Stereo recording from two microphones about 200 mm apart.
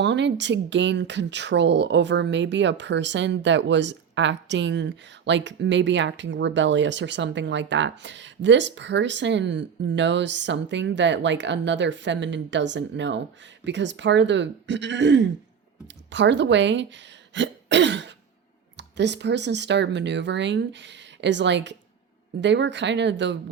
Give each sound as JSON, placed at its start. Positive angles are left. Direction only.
{"t": 0.0, "sound": "speech", "side_deg": -60}
{"t": 17.3, "sound": "throat clearing", "side_deg": -60}
{"t": 18.8, "sound": "speech", "side_deg": -60}